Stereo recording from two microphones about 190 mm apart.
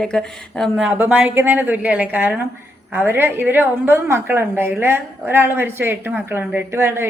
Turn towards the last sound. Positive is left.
turn(degrees=-10)  # may be behind; listen again after turning